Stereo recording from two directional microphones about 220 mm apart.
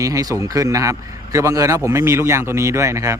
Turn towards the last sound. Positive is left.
turn(degrees=-15)  # may be behind; listen again after turning